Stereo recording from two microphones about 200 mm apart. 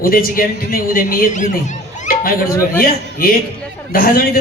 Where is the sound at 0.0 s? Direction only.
45° left (ahead or behind).